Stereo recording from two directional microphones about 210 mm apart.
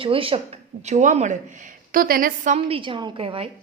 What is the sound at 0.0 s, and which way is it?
Speech, 25° right (ahead or behind).